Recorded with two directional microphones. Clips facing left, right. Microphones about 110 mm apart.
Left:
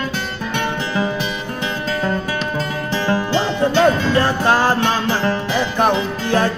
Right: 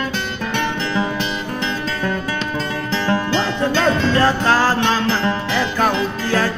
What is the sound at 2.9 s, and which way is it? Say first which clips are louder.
Music: left 1 dB; 15° left (ahead or behind).